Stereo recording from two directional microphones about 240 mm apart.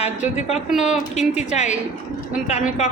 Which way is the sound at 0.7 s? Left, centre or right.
Centre.